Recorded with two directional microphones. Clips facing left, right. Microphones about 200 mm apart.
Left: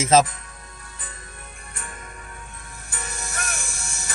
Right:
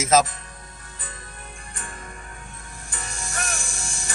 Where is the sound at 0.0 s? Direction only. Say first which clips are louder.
Left 2 dB; 30° left (ahead or behind).